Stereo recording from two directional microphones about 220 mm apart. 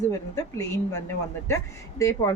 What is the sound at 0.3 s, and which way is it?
Speech, 15° left (ahead or behind).